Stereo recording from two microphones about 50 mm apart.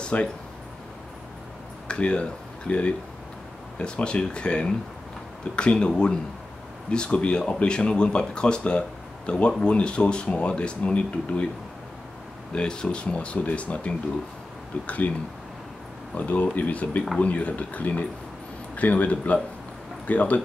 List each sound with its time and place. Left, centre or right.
0.0 s speech: left
1.9 s speech: left
12.5 s speech: centre; by 15.1 s left
16.2 s speech: left